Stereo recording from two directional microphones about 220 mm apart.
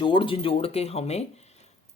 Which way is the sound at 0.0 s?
20° left (ahead or behind).